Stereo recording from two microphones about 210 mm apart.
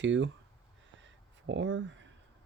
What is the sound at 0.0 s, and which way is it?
Speech, 60° right (ahead or behind).